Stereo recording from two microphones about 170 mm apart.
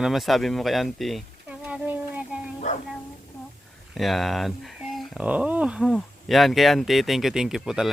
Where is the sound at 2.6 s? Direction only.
45° left (ahead or behind).